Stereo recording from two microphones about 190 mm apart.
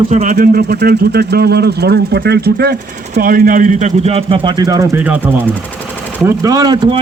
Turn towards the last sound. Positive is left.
turn(degrees=-25)  # may be behind; listen again after turning